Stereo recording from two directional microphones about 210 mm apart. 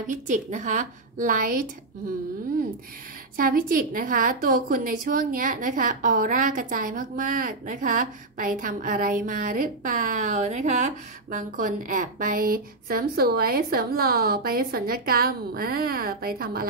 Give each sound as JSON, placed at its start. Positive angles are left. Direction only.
{"t": 0.0, "sound": "a woman's voice", "side_deg": -35}
{"t": 3.3, "sound": "a woman's voice", "side_deg": -40}